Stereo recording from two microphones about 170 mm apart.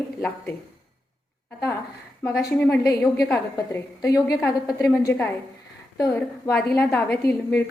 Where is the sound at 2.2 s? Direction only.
15° left (ahead or behind).